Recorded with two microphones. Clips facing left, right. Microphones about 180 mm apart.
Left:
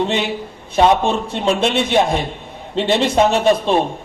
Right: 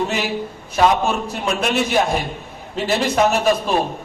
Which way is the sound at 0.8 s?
30° left (ahead or behind).